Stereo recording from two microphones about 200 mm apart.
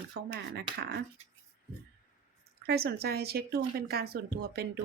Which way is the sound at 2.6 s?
55° right (ahead or behind).